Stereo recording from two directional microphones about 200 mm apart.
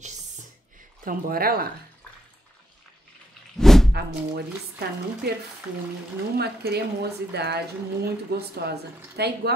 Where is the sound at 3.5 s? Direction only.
Centre (ahead or behind).